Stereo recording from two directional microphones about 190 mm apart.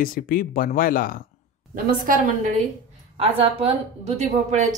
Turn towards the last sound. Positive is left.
turn(degrees=-35)  # may be behind; listen again after turning